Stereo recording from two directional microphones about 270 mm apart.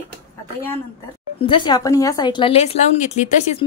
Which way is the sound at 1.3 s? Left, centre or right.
Centre.